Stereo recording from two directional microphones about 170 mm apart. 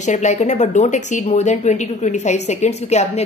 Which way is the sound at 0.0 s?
45° left (ahead or behind).